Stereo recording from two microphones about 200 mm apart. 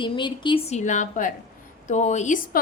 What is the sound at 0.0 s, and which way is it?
A woman's voice, 25° left (ahead or behind).